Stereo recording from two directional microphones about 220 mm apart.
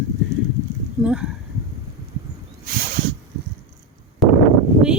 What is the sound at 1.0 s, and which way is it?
Speech, 5° right (ahead or behind).